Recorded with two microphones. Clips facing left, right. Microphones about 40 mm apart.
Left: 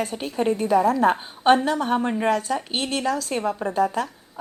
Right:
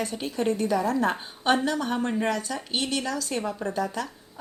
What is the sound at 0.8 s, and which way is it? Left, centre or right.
Speech, left.